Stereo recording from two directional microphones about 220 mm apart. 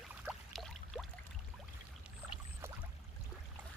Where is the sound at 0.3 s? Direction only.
Centre (ahead or behind).